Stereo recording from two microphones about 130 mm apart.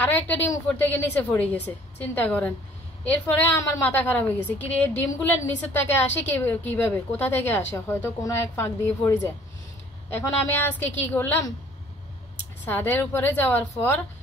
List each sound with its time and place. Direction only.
0.0 s a woman's voice: 15° left (ahead or behind)
12.6 s a woman's voice: 15° left (ahead or behind)